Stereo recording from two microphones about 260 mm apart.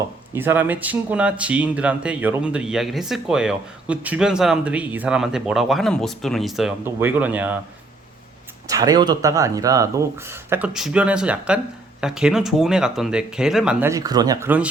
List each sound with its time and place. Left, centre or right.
0.3 s speech: centre
8.6 s speech: centre